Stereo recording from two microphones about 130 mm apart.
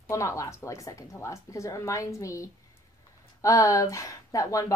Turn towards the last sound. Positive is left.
turn(degrees=25)  # may be behind; listen again after turning